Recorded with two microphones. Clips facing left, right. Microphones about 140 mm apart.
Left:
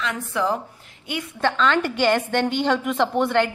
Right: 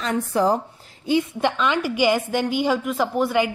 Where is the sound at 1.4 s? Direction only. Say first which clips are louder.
Left 1 dB; 15° right (ahead or behind).